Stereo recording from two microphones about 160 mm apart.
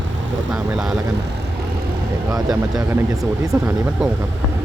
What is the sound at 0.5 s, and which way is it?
Speech, 5° right (ahead or behind).